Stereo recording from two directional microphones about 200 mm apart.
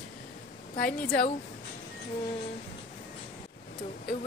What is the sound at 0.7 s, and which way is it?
Speech, 45° left (ahead or behind).